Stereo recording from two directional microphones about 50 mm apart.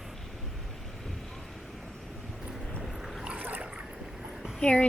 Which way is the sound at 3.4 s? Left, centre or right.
Right.